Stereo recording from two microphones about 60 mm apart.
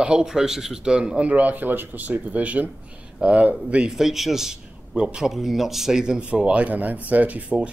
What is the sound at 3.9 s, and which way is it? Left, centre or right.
A man's voice, centre.